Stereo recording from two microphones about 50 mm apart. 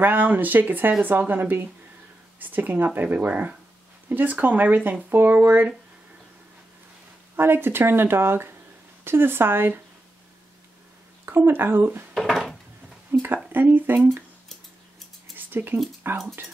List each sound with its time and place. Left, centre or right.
0.0 s speech: right
7.3 s speech: right
11.2 s speech: right
12.1 s dishes: centre
13.1 s a sound: right
13.5 s speech: right
15.3 s a sound: right
16.0 s speech: right